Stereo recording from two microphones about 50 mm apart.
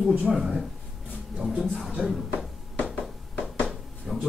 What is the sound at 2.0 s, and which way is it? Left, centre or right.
Speech, centre.